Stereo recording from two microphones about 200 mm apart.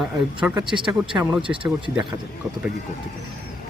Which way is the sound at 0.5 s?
25° right (ahead or behind).